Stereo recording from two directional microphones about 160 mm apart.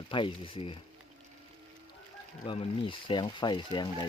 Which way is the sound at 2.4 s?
30° left (ahead or behind).